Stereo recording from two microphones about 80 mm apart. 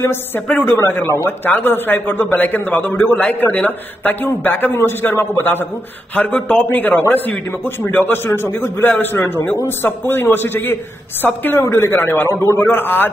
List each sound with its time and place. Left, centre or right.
0.0 s a man's voice: left
12.4 s a man's voice: left
12.6 s a man's voice: left